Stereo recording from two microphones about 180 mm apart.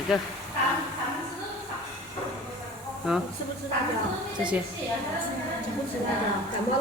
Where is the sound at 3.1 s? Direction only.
Centre (ahead or behind).